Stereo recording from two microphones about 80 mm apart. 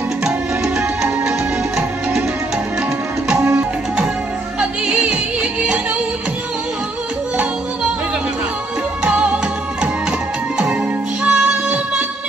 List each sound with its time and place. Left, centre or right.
4.6 s music: centre
9.0 s music: centre
11.2 s music: centre